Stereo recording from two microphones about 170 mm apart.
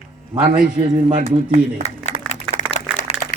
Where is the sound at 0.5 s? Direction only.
25° right (ahead or behind).